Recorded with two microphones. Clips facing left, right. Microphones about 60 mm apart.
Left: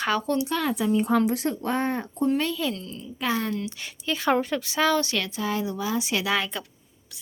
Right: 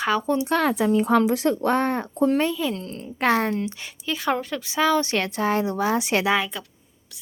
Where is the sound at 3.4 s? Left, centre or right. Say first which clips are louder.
Right 4 dB; right.